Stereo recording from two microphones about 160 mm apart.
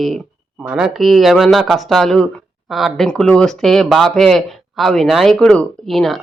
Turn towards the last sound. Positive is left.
turn(degrees=0)  # may be behind; listen again after turning